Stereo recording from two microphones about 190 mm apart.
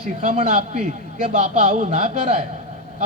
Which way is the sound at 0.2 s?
35° right (ahead or behind).